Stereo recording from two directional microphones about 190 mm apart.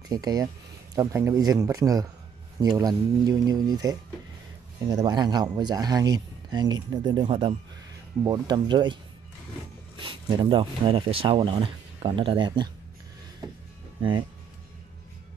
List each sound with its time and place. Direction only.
0.1 s speech: 20° right (ahead or behind)
9.9 s speech: 25° right (ahead or behind)